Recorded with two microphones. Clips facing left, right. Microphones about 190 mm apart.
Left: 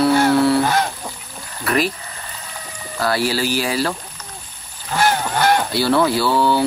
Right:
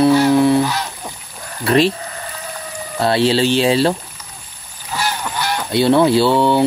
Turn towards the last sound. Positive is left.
turn(degrees=-25)  # may be behind; listen again after turning